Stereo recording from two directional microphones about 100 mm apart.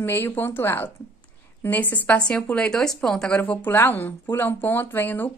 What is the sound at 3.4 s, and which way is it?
Speech, 15° left (ahead or behind).